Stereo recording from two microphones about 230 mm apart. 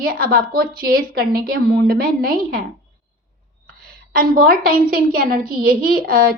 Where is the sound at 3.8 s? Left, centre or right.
Right.